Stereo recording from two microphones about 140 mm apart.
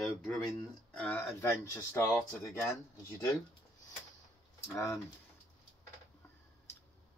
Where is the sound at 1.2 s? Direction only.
20° left (ahead or behind).